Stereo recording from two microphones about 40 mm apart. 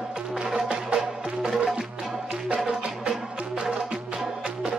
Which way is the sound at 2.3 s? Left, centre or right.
Right.